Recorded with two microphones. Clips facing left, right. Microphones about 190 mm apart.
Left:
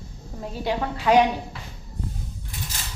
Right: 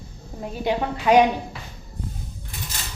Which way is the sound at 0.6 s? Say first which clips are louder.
Right 2 dB; 15° right (ahead or behind).